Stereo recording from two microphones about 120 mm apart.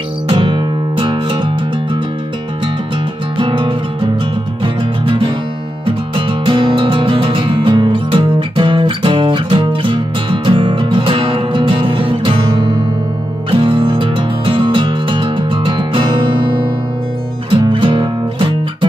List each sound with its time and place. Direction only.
0.3 s music: 45° right (ahead or behind)
3.3 s music: 45° right (ahead or behind)
5.0 s music: 45° right (ahead or behind)